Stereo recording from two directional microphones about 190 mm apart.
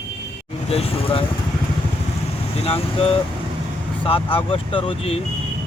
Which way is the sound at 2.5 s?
30° left (ahead or behind).